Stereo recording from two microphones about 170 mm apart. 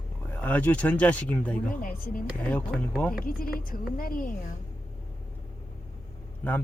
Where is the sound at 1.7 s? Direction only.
55° left (ahead or behind).